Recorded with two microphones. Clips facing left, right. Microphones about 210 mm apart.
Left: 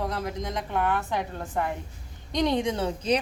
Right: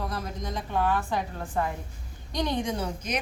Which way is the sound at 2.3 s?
20° left (ahead or behind).